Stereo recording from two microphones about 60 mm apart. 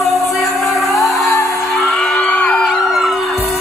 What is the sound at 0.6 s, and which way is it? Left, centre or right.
Music, centre.